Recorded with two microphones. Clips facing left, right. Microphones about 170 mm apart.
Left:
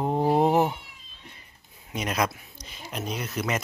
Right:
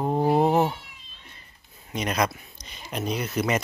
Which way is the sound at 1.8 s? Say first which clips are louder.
Right 2 dB; 5° left (ahead or behind).